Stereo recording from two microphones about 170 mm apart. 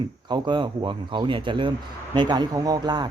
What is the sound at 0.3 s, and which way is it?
Speech, 25° right (ahead or behind).